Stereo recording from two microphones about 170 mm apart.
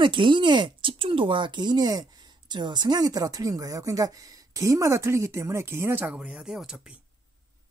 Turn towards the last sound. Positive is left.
turn(degrees=-5)  # may be behind; listen again after turning